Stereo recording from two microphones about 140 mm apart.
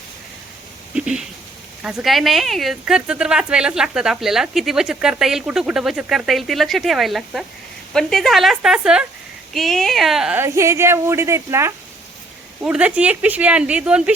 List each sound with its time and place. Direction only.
0.9 s speech: 5° right (ahead or behind)
10.3 s speech: 20° right (ahead or behind)
12.6 s speech: 10° right (ahead or behind)